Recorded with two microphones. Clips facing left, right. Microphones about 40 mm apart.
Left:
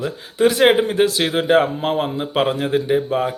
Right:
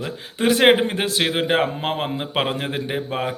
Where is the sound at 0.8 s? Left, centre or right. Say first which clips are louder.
Left 4 dB; right.